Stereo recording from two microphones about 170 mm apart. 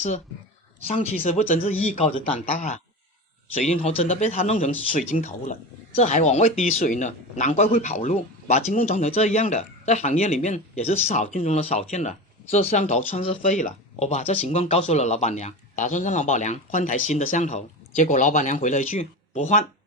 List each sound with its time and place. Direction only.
0.9 s speech: 45° left (ahead or behind)